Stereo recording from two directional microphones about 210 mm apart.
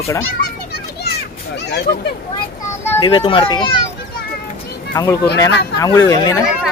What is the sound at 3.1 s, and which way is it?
Speech, 25° left (ahead or behind).